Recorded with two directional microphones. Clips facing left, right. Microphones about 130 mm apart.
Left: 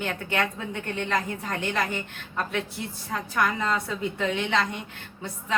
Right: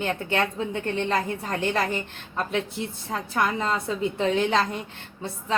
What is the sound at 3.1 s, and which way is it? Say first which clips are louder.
A woman's voice: even; 30° right (ahead or behind).